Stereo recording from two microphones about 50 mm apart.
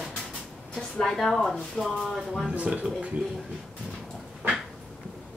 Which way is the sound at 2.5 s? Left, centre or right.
Right.